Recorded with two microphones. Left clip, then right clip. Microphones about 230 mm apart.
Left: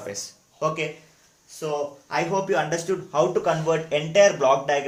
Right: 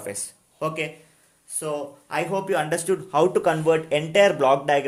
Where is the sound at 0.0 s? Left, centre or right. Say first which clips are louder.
Even; right.